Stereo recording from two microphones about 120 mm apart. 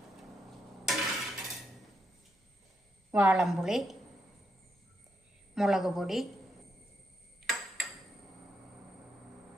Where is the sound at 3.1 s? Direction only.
15° right (ahead or behind).